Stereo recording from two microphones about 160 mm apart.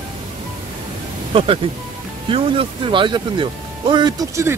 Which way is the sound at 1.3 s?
35° right (ahead or behind).